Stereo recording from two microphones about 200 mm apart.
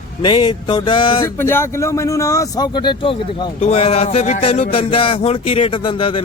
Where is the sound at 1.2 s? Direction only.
10° left (ahead or behind).